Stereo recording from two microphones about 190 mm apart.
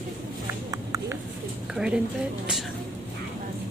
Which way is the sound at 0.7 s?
15° right (ahead or behind).